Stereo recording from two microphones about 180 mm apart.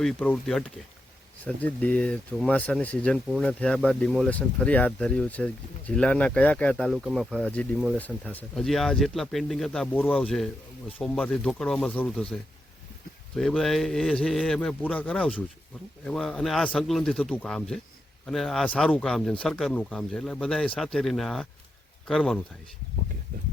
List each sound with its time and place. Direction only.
0.0 s speech: 5° left (ahead or behind)
13.3 s speech: centre (ahead or behind)
23.3 s speech: 55° right (ahead or behind)